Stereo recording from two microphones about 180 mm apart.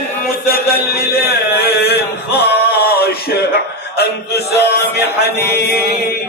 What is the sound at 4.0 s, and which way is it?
Music, 65° left (ahead or behind).